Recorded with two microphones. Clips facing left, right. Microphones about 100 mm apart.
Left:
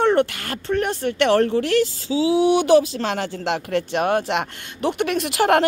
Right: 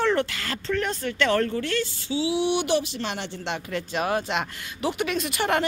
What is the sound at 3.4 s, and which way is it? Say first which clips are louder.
Speech: left 7 dB; 90° left.